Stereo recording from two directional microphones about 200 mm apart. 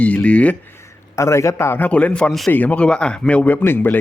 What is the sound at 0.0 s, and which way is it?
A man's voice, 5° left (ahead or behind).